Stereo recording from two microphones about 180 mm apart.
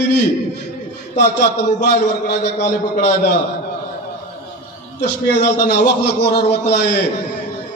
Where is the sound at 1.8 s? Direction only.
65° left (ahead or behind).